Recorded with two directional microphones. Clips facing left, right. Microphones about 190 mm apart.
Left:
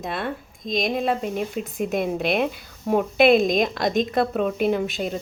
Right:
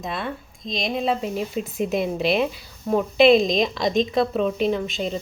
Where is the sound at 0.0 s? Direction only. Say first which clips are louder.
Left 1 dB; centre (ahead or behind).